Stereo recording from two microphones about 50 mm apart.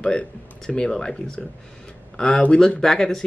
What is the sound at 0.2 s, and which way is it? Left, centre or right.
Speech, left.